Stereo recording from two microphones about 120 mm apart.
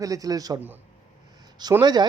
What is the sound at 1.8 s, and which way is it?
Speech, 35° right (ahead or behind).